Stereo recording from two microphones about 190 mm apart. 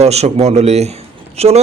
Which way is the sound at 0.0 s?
35° right (ahead or behind).